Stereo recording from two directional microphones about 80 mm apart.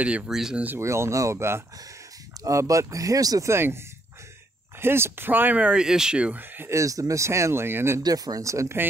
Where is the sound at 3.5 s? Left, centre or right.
Right.